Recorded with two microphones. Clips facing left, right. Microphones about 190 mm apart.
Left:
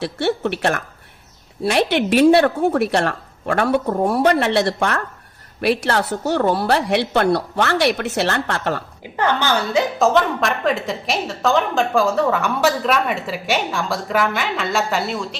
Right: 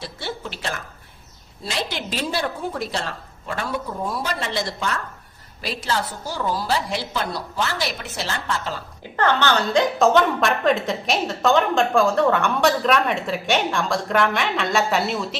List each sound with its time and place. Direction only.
0.0 s speech: 70° left (ahead or behind)
9.1 s a woman's voice: 10° left (ahead or behind)